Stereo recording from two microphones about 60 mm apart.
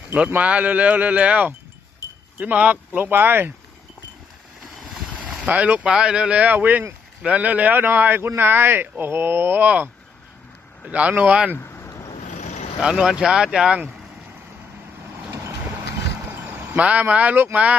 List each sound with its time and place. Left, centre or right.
0.4 s speech: right
5.2 s boat: right
5.9 s speech: centre; by 9.7 s right
10.9 s speech: right
11.5 s a sound: left
12.8 s speech: centre
16.2 s vehicle: right
16.7 s speech: right